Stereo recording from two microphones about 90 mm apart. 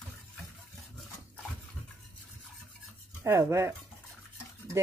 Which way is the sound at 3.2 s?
30° right (ahead or behind).